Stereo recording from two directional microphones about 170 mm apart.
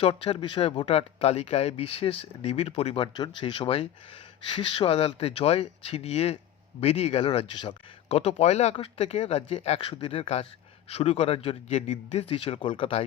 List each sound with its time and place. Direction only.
0.0 s speech: 35° left (ahead or behind)